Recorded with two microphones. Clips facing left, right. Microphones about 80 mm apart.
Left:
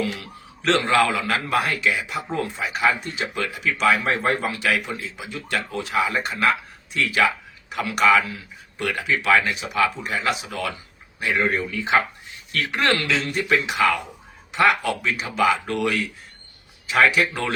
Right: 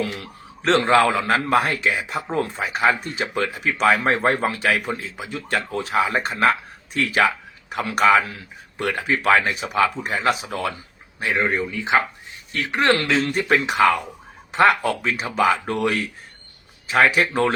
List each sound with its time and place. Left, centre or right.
0.0 s a man's voice: right